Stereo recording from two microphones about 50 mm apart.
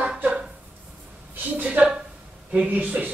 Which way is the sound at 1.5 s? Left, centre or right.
Right.